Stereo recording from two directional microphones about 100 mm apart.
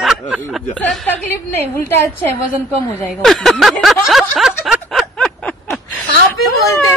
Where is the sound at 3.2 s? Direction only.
5° left (ahead or behind).